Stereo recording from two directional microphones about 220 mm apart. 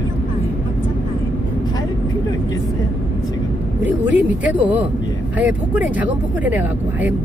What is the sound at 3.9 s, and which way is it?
Speech, 5° right (ahead or behind).